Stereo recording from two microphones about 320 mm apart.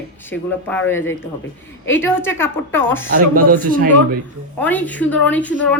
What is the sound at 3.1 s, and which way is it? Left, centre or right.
Speech, right.